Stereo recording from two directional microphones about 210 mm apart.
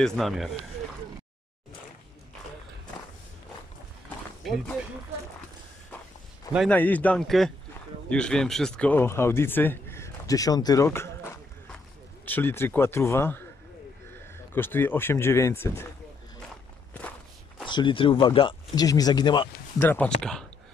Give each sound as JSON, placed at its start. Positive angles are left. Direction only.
{"t": 0.0, "sound": "speech", "side_deg": 0}
{"t": 4.4, "sound": "speech", "side_deg": 0}
{"t": 6.7, "sound": "speech", "side_deg": 5}
{"t": 14.5, "sound": "speech", "side_deg": 10}
{"t": 17.6, "sound": "speech", "side_deg": 20}
{"t": 20.2, "sound": "speech", "side_deg": 5}